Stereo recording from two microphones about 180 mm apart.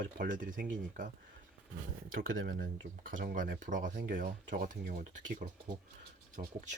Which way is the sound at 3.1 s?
45° right (ahead or behind).